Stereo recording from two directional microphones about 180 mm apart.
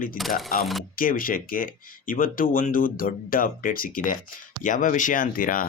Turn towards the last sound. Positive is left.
turn(degrees=50)  # may be behind; listen again after turning